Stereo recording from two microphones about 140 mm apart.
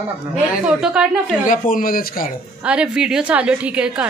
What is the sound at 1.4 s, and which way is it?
Speech, 75° left (ahead or behind).